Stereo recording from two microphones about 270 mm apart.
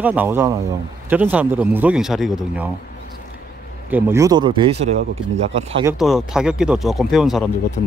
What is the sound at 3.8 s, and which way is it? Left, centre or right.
Speech, centre.